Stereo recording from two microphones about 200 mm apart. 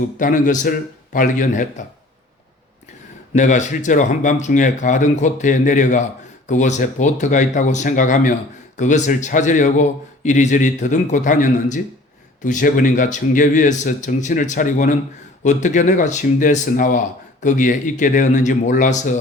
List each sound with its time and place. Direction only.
0.2 s speech: 40° left (ahead or behind)
3.3 s speech: 40° left (ahead or behind)